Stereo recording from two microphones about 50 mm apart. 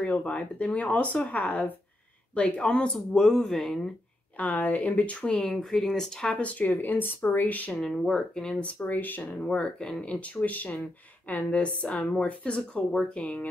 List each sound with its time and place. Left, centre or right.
0.0 s speech: left; by 3.9 s centre
4.4 s speech: left
5.3 s speech: centre
6.3 s speech: left
7.8 s speech: centre
8.5 s speech: left
8.9 s speech: left
9.4 s speech: left